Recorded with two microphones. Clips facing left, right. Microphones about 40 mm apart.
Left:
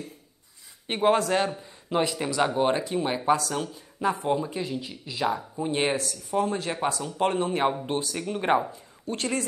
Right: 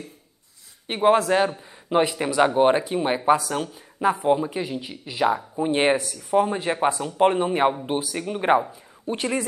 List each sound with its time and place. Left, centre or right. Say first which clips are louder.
0.8 s speech: right 4 dB; centre